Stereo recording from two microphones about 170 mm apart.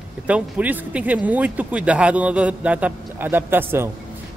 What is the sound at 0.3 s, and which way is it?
Speech, 10° right (ahead or behind).